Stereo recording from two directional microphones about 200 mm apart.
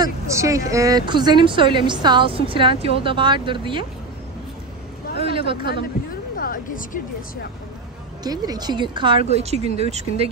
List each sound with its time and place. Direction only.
0.0 s a woman's voice: 15° right (ahead or behind)
5.2 s speech: 25° right (ahead or behind)
6.3 s a woman's voice: 45° left (ahead or behind)
8.2 s a woman's voice: 20° right (ahead or behind)